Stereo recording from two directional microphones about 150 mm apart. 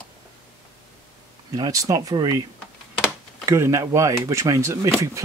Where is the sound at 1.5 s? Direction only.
25° right (ahead or behind).